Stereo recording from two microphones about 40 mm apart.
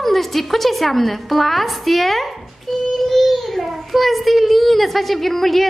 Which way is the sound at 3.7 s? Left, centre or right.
Centre.